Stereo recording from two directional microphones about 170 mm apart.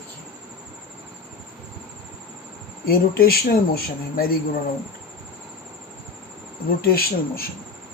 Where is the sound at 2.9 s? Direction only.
60° left (ahead or behind).